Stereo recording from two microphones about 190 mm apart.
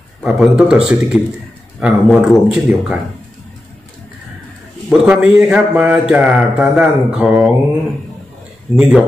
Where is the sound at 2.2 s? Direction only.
5° right (ahead or behind).